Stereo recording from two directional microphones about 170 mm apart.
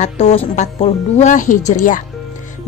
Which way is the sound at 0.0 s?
35° left (ahead or behind).